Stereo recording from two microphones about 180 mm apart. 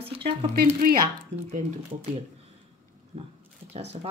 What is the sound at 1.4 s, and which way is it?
Speech, 35° right (ahead or behind).